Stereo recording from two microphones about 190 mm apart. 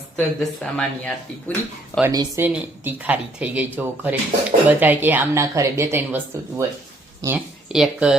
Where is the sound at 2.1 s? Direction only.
20° right (ahead or behind).